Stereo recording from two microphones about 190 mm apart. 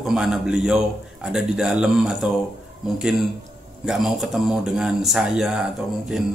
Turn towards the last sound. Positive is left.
turn(degrees=0)  # may be behind; listen again after turning